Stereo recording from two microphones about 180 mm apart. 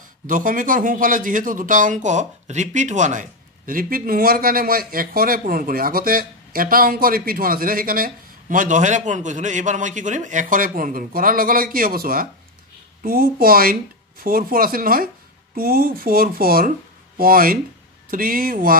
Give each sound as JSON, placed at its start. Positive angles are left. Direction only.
{"t": 0.3, "sound": "a man's voice", "side_deg": -50}